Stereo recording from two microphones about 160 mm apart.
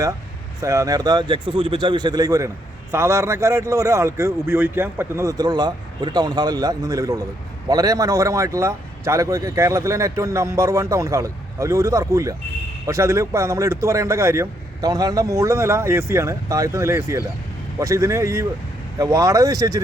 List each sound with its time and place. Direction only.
0.6 s a man's voice: 20° right (ahead or behind)